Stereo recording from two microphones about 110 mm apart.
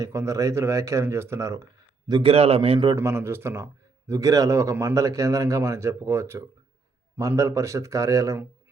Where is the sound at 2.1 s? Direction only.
55° right (ahead or behind).